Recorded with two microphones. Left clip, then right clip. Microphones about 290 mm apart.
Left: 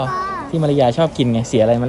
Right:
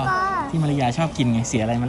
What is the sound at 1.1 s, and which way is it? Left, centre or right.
Speech, centre.